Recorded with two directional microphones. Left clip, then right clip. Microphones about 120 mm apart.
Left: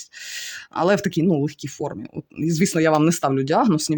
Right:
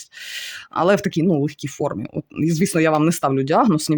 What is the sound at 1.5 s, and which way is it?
Speech, 35° right (ahead or behind).